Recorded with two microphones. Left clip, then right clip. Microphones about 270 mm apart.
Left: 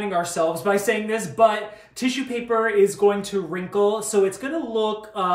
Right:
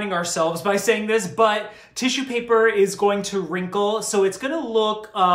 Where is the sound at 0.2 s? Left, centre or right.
Centre.